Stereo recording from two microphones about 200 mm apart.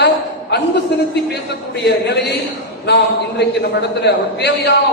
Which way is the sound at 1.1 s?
55° left (ahead or behind).